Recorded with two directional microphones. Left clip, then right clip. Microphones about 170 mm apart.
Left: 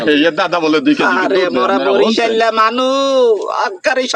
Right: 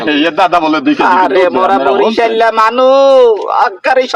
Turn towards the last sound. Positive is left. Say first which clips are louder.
# right 5 dB
turn(degrees=20)  # may be behind; listen again after turning